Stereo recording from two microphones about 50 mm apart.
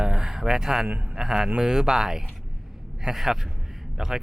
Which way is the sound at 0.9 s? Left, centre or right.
Right.